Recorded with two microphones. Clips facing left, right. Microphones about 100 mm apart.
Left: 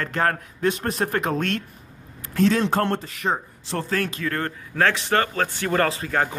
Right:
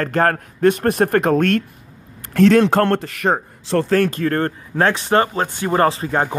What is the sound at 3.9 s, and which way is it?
Speech, 45° right (ahead or behind).